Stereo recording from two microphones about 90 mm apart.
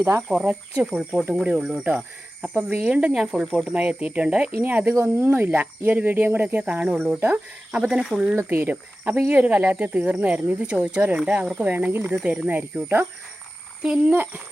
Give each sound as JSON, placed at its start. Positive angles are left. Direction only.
{"t": 0.0, "sound": "speech", "side_deg": -25}
{"t": 0.3, "sound": "speech", "side_deg": -10}
{"t": 2.6, "sound": "speech", "side_deg": -25}
{"t": 2.8, "sound": "speech", "side_deg": -10}
{"t": 8.4, "sound": "speech", "side_deg": -20}
{"t": 13.8, "sound": "speech", "side_deg": -10}